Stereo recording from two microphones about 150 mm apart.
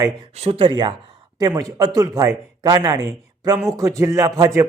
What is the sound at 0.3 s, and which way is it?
A man's voice, 40° right (ahead or behind).